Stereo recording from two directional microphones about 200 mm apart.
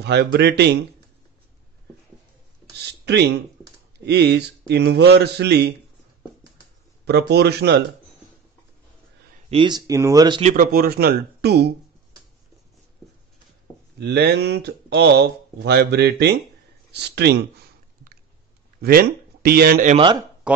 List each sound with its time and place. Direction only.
0.0 s speech: 55° right (ahead or behind)
3.1 s speech: 55° right (ahead or behind)
7.1 s speech: 55° right (ahead or behind)
9.5 s speech: 25° right (ahead or behind)
10.4 s speech: 45° right (ahead or behind)
13.9 s speech: 55° right (ahead or behind)
16.9 s a sound: 55° right (ahead or behind)
18.8 s speech: 50° right (ahead or behind)
19.9 s speech: 25° right (ahead or behind)
20.5 s speech: 5° right (ahead or behind)